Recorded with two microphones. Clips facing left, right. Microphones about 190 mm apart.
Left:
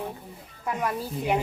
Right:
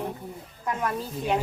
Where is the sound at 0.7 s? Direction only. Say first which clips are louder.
Even; 10° left (ahead or behind).